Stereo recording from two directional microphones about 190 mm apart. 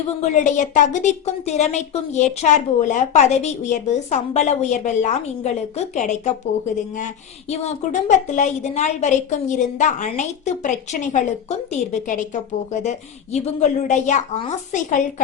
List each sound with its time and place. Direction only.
0.2 s a woman's voice: 40° left (ahead or behind)
7.5 s a woman's voice: 35° left (ahead or behind)